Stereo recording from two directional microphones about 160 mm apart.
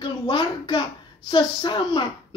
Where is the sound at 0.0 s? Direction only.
30° left (ahead or behind).